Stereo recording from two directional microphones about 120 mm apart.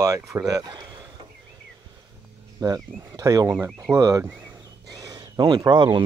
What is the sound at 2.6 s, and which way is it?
Speech, 30° right (ahead or behind).